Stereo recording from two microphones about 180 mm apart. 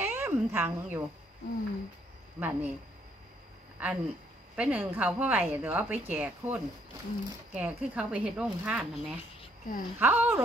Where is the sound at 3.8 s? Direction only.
10° right (ahead or behind).